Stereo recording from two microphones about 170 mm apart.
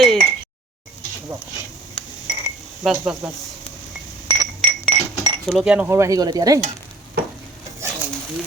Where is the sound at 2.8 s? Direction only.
Centre (ahead or behind).